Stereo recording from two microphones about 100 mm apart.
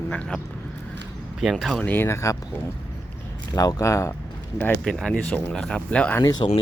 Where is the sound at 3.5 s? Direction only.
40° left (ahead or behind).